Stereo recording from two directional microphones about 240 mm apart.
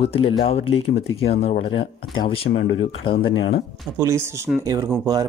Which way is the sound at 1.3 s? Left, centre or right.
Left.